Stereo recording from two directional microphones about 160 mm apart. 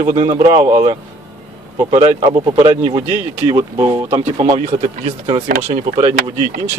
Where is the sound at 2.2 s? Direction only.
30° right (ahead or behind).